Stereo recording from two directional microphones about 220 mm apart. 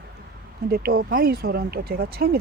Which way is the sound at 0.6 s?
45° right (ahead or behind).